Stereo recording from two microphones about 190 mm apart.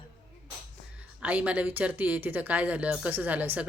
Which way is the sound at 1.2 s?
5° right (ahead or behind).